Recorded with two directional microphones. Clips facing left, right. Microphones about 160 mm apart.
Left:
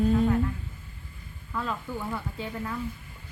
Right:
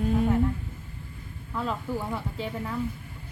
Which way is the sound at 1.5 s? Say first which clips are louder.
Right 2 dB; 25° right (ahead or behind).